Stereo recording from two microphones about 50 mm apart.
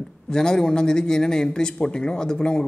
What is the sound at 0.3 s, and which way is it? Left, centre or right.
A man's voice, centre.